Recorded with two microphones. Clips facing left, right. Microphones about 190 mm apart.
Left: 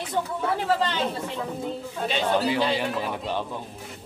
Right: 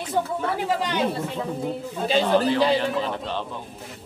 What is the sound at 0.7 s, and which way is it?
Speech, 15° right (ahead or behind).